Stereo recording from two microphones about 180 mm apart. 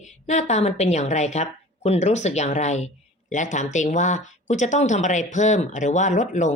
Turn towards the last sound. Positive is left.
turn(degrees=40)  # may be behind; listen again after turning